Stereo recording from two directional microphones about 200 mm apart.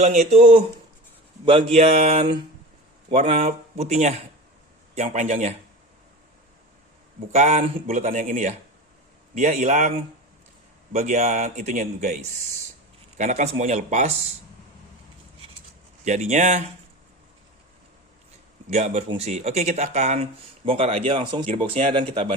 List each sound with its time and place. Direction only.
0.0 s speech: 35° right (ahead or behind)
7.3 s speech: 35° right (ahead or behind)
16.0 s speech: 35° right (ahead or behind)
18.7 s speech: 35° right (ahead or behind)